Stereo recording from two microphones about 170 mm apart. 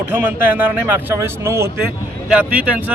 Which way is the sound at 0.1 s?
10° right (ahead or behind).